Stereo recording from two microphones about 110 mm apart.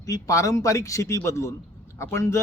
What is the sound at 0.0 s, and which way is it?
A man's voice, 30° left (ahead or behind).